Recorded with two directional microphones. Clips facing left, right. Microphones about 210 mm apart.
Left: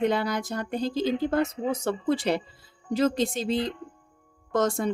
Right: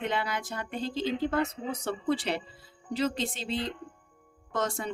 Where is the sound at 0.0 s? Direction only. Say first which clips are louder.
Left 7 dB; 40° left (ahead or behind).